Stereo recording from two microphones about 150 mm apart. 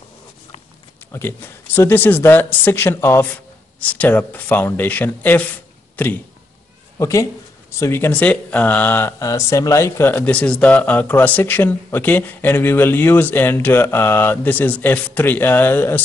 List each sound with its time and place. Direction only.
1.1 s speech: 15° left (ahead or behind)
7.0 s speech: 20° left (ahead or behind)